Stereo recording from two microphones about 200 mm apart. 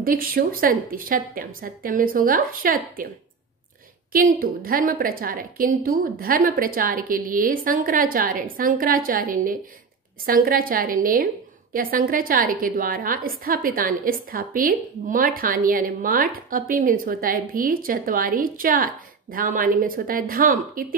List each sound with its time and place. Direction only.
0.0 s a woman's voice: 45° right (ahead or behind)
4.4 s a woman's voice: 45° right (ahead or behind)